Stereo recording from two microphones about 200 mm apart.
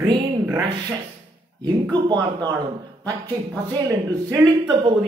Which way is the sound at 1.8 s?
20° right (ahead or behind).